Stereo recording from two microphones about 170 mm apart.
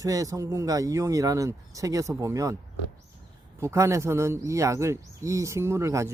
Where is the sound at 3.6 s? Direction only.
15° right (ahead or behind).